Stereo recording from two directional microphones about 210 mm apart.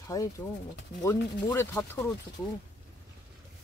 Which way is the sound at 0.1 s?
15° left (ahead or behind).